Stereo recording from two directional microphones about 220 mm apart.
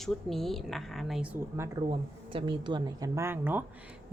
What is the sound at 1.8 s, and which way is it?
Speech, 20° right (ahead or behind).